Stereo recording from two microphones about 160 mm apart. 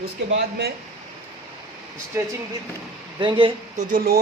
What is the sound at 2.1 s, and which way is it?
Speech, 15° right (ahead or behind).